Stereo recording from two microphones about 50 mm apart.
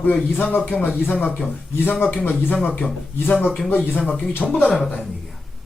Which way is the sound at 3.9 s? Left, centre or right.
Left.